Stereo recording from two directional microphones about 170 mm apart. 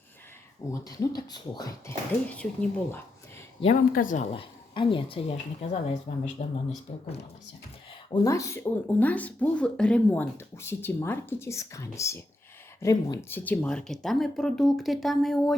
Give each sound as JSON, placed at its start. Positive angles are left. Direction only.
{"t": 0.7, "sound": "speech", "side_deg": 20}
{"t": 2.3, "sound": "speech", "side_deg": 10}
{"t": 3.8, "sound": "speech", "side_deg": 55}
{"t": 4.3, "sound": "speech", "side_deg": 30}
{"t": 8.1, "sound": "speech", "side_deg": 20}